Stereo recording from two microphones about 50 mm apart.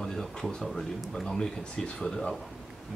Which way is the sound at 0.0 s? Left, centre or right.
Centre.